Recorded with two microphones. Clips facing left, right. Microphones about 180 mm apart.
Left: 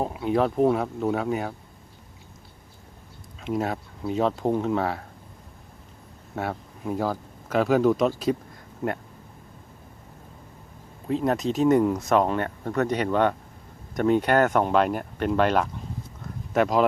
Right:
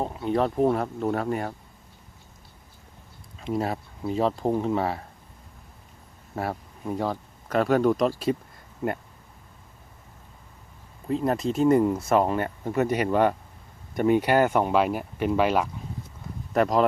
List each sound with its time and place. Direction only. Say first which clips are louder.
0.0 s speech: left 1 dB; 5° left (ahead or behind)
3.4 s speech: even; centre (ahead or behind)
6.3 s speech: even; centre (ahead or behind)
11.1 s speech: left 1 dB; centre (ahead or behind)